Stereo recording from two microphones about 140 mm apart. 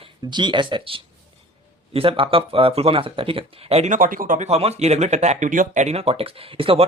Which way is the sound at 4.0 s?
80° right.